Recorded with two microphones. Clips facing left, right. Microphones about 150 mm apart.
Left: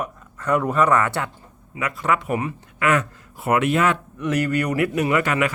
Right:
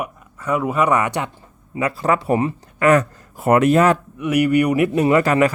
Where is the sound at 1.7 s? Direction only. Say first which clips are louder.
Right 4 dB; 35° right (ahead or behind).